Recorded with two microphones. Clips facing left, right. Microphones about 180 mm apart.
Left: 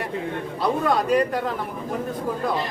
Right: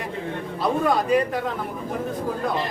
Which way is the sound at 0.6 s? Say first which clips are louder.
Even; centre (ahead or behind).